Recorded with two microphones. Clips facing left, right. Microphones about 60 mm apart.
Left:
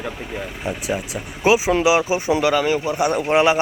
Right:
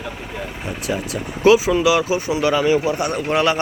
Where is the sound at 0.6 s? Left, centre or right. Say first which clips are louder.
Even; centre.